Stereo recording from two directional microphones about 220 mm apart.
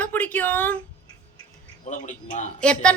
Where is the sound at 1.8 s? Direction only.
35° left (ahead or behind).